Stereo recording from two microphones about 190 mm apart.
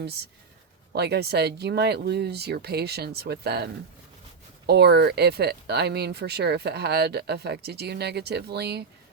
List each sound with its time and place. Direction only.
0.9 s speech: 60° right (ahead or behind)